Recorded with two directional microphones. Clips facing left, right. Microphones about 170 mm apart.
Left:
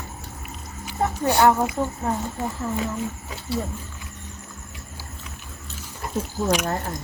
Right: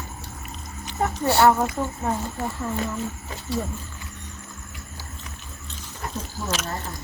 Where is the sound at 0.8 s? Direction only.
10° left (ahead or behind).